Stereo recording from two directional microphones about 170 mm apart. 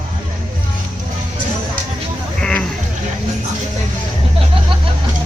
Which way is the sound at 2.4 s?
5° left (ahead or behind).